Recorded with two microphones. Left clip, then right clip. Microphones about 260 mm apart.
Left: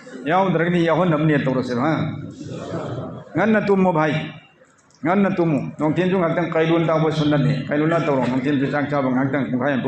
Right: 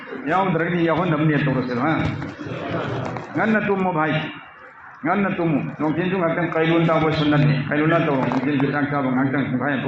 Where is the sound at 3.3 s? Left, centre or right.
Left.